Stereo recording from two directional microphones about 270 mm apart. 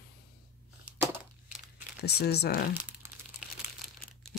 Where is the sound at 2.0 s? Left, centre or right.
Left.